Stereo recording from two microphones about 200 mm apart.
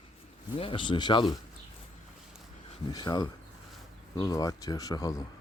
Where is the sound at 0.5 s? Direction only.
25° left (ahead or behind).